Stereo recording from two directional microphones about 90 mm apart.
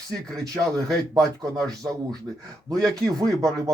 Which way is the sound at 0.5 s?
40° right (ahead or behind).